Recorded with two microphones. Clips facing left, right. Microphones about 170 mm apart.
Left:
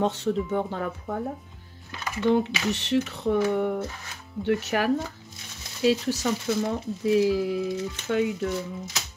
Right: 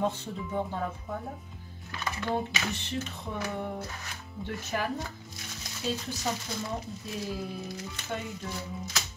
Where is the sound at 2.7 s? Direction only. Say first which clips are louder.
Left 10 dB; 80° left.